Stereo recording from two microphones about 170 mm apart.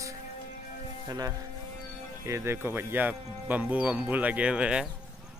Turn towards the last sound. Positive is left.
turn(degrees=-5)  # may be behind; listen again after turning